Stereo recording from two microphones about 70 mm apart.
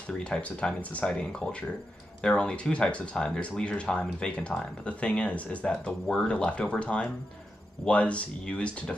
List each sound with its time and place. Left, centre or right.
0.2 s speech: centre
5.9 s speech: centre